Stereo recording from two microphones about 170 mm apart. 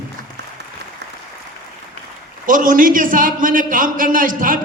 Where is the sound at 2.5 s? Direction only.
50° right (ahead or behind).